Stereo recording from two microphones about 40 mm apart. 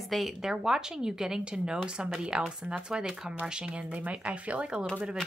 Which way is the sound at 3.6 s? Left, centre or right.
Right.